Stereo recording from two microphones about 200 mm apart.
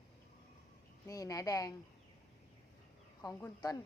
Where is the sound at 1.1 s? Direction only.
15° left (ahead or behind).